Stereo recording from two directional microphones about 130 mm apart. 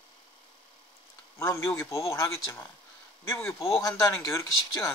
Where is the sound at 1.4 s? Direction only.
20° left (ahead or behind).